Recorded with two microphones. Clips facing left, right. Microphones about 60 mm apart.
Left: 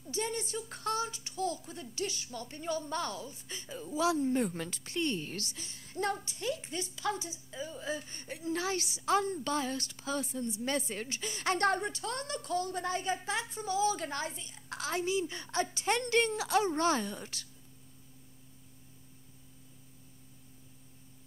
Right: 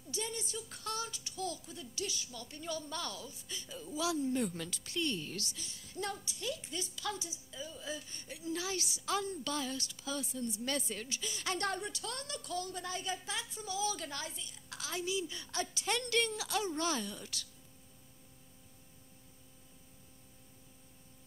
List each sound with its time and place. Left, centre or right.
0.1 s speech: left